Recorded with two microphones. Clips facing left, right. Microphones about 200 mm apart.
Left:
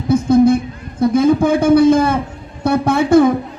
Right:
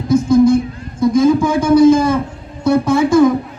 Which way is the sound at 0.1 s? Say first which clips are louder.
Right 1 dB; 60° left (ahead or behind).